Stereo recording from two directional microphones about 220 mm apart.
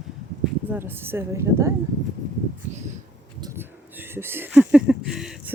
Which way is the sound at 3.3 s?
15° right (ahead or behind).